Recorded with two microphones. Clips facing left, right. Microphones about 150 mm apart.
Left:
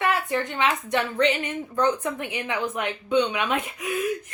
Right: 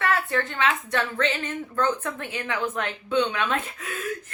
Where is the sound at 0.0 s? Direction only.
15° left (ahead or behind).